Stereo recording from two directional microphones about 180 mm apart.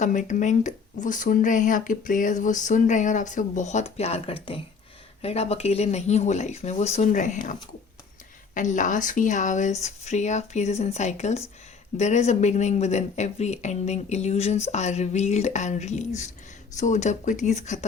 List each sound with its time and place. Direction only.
0.0 s speech: 45° left (ahead or behind)
8.5 s speech: 45° left (ahead or behind)